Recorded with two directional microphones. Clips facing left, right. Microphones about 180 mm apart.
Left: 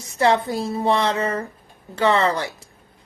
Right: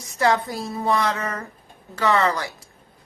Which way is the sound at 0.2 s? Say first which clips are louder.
Left 2 dB; 30° left (ahead or behind).